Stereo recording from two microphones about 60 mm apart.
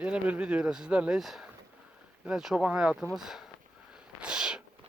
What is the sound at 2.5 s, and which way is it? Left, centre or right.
Speech, centre.